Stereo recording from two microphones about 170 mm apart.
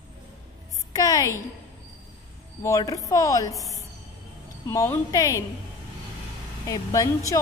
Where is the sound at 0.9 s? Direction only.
20° left (ahead or behind).